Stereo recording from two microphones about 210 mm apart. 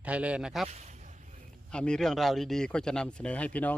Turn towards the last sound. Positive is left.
turn(degrees=5)  # may be behind; listen again after turning